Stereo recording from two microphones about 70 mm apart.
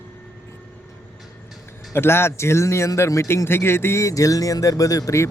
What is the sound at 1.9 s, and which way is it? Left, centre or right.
A man's voice, left.